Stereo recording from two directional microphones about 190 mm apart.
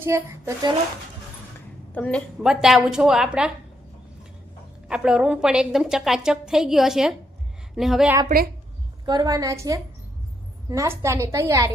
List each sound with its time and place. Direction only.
0.0 s a woman's voice: 15° right (ahead or behind)
1.9 s a woman's voice: 5° left (ahead or behind)
4.9 s a woman's voice: 5° right (ahead or behind)
9.0 s a woman's voice: 20° right (ahead or behind)